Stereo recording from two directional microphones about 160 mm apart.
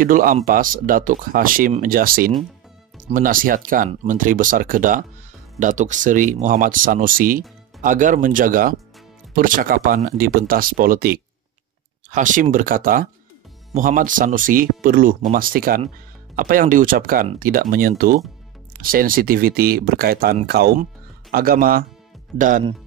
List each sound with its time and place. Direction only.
0.0 s speech: 60° right (ahead or behind)
12.1 s speech: 55° right (ahead or behind)